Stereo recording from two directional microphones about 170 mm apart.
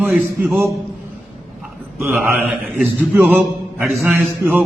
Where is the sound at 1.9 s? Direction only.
10° right (ahead or behind).